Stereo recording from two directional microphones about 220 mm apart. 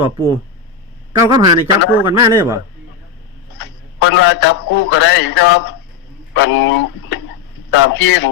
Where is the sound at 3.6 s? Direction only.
60° left (ahead or behind).